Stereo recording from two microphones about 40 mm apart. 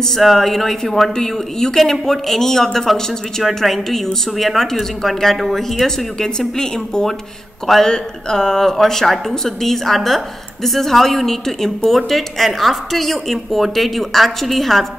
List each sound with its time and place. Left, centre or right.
0.0 s a woman's voice: centre
6.5 s a woman's voice: centre